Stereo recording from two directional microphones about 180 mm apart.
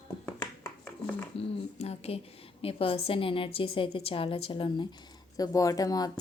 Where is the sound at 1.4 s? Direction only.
35° left (ahead or behind); by 6.1 s 20° left (ahead or behind).